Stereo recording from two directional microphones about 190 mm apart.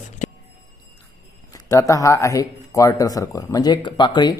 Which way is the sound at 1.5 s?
15° left (ahead or behind).